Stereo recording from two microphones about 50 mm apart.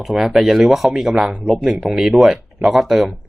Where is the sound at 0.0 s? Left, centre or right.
Centre.